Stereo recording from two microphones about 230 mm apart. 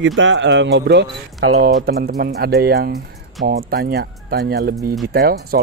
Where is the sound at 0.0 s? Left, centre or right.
Right.